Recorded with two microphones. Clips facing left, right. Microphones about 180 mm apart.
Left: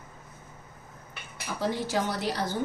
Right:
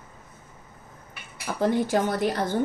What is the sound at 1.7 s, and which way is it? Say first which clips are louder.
Speech: right 6 dB; 55° right (ahead or behind).